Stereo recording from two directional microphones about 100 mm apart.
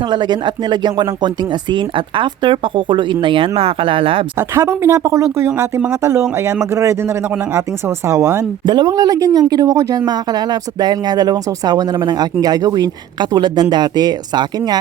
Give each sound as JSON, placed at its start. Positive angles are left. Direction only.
{"t": 0.1, "sound": "speech", "side_deg": -50}
{"t": 4.4, "sound": "speech", "side_deg": -30}
{"t": 8.6, "sound": "speech", "side_deg": -50}